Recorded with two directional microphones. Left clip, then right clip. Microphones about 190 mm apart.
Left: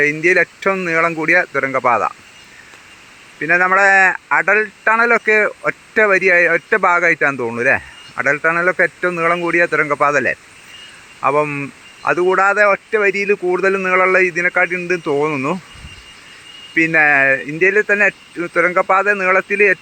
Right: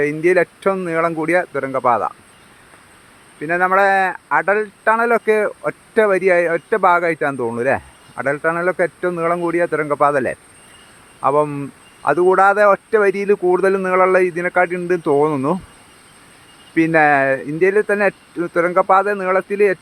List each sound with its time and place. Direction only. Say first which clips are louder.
0.0 s speech: left 2 dB; 15° right (ahead or behind)
3.4 s speech: left 2 dB; 5° right (ahead or behind)
16.7 s speech: left 1 dB; 20° right (ahead or behind)